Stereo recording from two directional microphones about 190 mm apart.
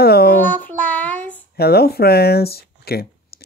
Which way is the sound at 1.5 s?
55° left (ahead or behind).